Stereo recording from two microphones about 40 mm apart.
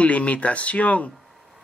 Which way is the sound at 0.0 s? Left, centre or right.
Left.